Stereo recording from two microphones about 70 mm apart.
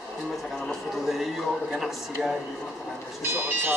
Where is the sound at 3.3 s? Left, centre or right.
Right.